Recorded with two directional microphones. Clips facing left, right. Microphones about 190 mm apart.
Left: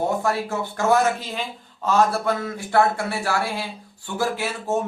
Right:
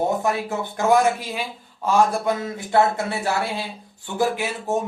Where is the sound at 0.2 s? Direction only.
20° right (ahead or behind).